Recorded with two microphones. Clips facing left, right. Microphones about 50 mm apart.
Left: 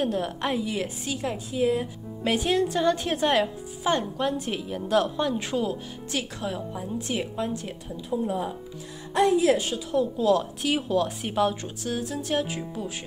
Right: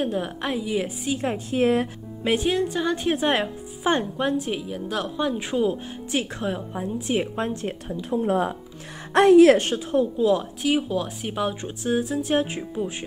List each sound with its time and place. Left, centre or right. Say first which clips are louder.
0.0 s speech: even; centre
1.5 s speech: right 4 dB; right
2.2 s speech: right 1 dB; centre
4.4 s a woman's voice: right 2 dB; centre
5.2 s speech: right 3 dB; centre
7.3 s speech: right 3 dB; right
8.3 s a woman's voice: right 6 dB; right
10.1 s speech: right 1 dB; centre
11.6 s speech: right 6 dB; right